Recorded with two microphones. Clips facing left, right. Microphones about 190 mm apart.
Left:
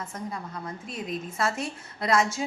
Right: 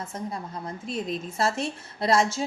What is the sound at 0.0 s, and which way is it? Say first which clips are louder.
A woman's voice: right 2 dB; 25° right (ahead or behind).